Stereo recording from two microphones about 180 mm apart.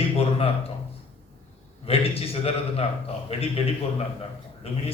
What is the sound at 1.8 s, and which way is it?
A man's voice, 35° left (ahead or behind).